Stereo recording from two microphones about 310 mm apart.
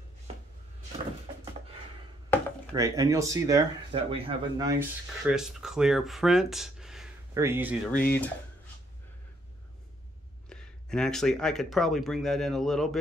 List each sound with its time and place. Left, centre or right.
2.7 s speech: centre
7.9 s speech: left
10.5 s speech: centre